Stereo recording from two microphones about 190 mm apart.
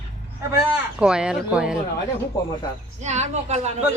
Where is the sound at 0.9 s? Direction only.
5° right (ahead or behind).